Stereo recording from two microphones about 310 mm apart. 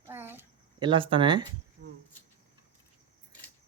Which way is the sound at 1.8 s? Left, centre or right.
Right.